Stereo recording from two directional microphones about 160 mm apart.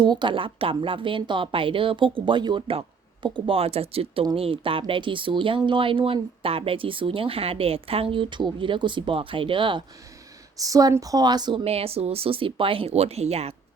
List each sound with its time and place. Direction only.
0.0 s speech: 30° right (ahead or behind)
11.6 s speech: 40° right (ahead or behind)